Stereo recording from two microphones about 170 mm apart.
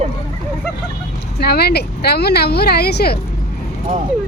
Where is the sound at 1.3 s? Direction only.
70° left (ahead or behind).